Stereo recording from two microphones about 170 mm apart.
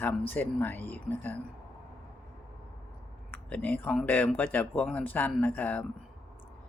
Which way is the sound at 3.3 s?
10° left (ahead or behind).